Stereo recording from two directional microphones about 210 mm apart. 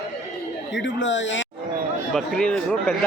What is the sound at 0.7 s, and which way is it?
Speech, 60° left (ahead or behind).